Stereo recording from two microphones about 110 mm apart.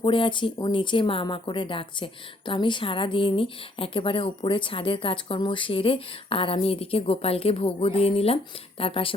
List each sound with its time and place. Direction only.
0.0 s speech: 50° left (ahead or behind)